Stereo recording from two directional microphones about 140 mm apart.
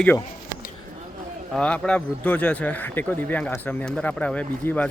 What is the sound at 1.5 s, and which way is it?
Speech, 5° left (ahead or behind).